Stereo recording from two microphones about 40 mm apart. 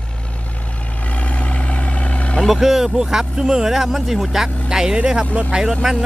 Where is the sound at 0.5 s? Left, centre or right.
Left.